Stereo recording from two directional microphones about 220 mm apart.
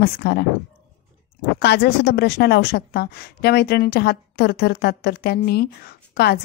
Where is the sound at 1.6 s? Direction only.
45° left (ahead or behind).